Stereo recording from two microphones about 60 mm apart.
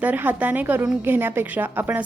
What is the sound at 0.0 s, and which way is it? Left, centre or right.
A woman's voice, right.